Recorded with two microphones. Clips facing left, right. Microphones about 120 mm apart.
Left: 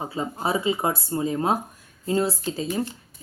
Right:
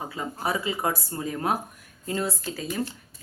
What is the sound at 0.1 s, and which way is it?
A woman's voice, 25° left (ahead or behind).